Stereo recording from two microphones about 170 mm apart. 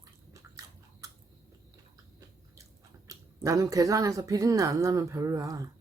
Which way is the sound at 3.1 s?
20° right (ahead or behind).